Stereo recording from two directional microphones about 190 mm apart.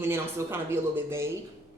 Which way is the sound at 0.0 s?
15° right (ahead or behind).